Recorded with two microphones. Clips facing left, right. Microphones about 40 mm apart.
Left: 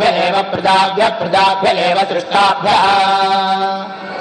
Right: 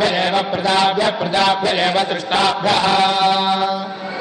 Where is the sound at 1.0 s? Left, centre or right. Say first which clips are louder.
Left 4 dB; centre.